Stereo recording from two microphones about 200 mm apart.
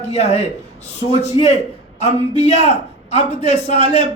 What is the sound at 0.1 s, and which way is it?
A man's voice, 30° left (ahead or behind).